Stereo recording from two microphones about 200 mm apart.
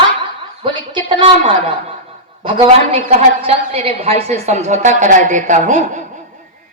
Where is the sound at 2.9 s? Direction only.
30° right (ahead or behind).